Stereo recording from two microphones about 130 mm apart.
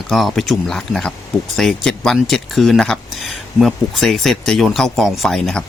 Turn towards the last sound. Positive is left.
turn(degrees=0)  # may be behind; listen again after turning